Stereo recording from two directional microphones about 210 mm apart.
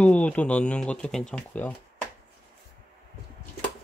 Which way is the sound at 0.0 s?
5° left (ahead or behind).